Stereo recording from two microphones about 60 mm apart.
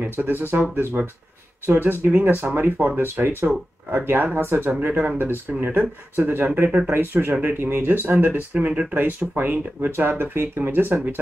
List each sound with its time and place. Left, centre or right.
0.0 s speech: right